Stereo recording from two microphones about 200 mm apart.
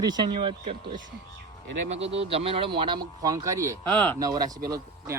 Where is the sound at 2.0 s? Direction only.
30° right (ahead or behind).